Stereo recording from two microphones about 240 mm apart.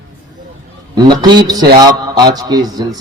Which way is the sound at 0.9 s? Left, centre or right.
Centre.